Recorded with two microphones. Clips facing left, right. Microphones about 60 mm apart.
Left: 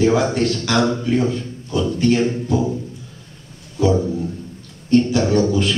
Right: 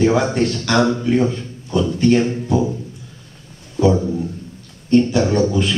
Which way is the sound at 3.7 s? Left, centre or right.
Centre.